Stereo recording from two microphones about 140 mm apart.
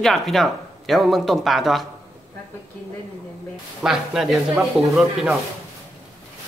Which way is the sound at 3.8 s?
5° right (ahead or behind).